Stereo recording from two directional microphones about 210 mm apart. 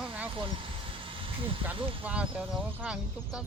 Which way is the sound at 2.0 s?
5° right (ahead or behind).